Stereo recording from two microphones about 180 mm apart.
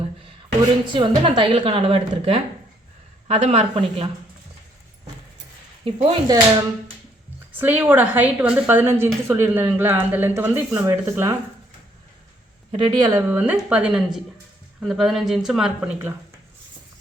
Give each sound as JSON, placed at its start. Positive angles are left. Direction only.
{"t": 0.9, "sound": "a woman's voice", "side_deg": -30}
{"t": 5.8, "sound": "speech", "side_deg": -30}
{"t": 7.6, "sound": "speech", "side_deg": -10}
{"t": 12.7, "sound": "a woman's voice", "side_deg": -25}
{"t": 13.3, "sound": "speech", "side_deg": -10}